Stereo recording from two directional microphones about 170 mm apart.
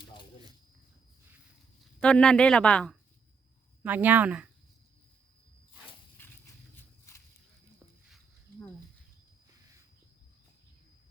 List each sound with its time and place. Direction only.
0.0 s a sound: 30° left (ahead or behind)
1.8 s a woman's voice: 5° left (ahead or behind)
3.8 s speech: 10° right (ahead or behind)
6.2 s horse: 10° left (ahead or behind)
6.7 s walk: 15° left (ahead or behind)